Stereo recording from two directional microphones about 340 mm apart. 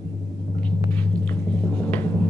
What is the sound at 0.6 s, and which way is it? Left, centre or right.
Rumble, centre.